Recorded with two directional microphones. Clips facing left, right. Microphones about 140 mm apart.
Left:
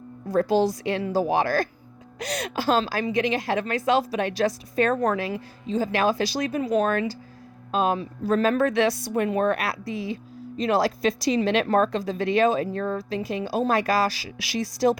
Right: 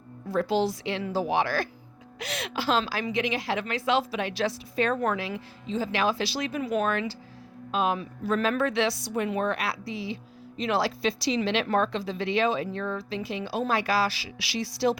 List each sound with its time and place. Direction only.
0.3 s a woman's voice: 45° left (ahead or behind)